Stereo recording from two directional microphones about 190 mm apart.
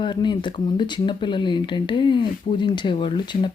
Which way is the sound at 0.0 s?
25° left (ahead or behind).